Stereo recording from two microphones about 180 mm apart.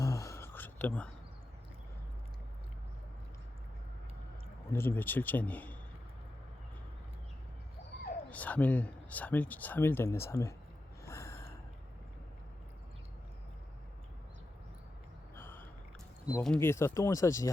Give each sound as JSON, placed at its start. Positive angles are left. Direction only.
{"t": 0.0, "sound": "a sound", "side_deg": 15}
{"t": 4.7, "sound": "speech", "side_deg": 15}
{"t": 8.3, "sound": "speech", "side_deg": 10}
{"t": 11.0, "sound": "gasp", "side_deg": 15}
{"t": 15.4, "sound": "gasp", "side_deg": 10}
{"t": 16.4, "sound": "speech", "side_deg": 10}